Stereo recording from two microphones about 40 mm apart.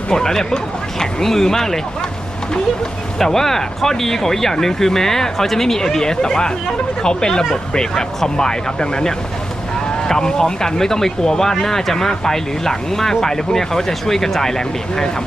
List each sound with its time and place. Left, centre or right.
0.1 s speech: centre
3.2 s speech: centre